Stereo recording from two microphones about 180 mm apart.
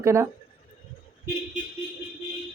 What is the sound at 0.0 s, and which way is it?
Speech, 15° right (ahead or behind).